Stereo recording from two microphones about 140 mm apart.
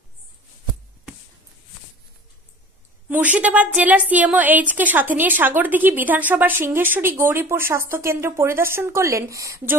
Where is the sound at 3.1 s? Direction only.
10° right (ahead or behind).